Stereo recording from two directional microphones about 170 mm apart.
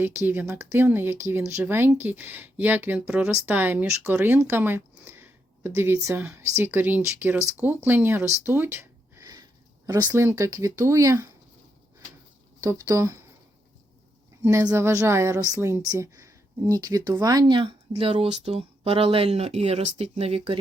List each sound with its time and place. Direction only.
0.3 s speech: 10° right (ahead or behind)
8.4 s a sound: 10° right (ahead or behind)
10.1 s speech: 15° right (ahead or behind)
12.6 s a woman's voice: 20° right (ahead or behind)
14.4 s a woman's voice: 20° right (ahead or behind); by 20.6 s 35° right (ahead or behind)